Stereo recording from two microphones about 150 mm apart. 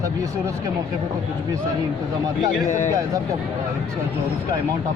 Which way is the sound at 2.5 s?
55° left (ahead or behind).